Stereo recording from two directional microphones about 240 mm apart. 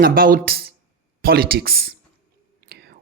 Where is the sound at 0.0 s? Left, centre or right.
Right.